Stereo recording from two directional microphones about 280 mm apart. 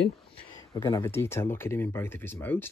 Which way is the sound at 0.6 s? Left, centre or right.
Centre.